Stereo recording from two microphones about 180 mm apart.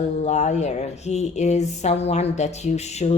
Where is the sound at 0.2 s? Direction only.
40° left (ahead or behind).